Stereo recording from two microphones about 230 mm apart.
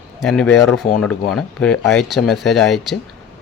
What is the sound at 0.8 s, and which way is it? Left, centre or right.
Speech, left.